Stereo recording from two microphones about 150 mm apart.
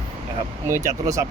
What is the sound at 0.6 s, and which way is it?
Speech, 20° right (ahead or behind).